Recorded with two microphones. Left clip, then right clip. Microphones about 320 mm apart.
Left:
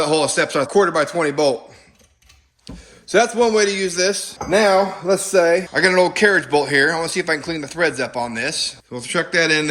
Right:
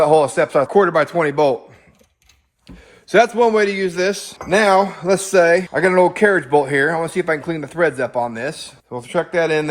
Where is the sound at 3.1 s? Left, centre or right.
Right.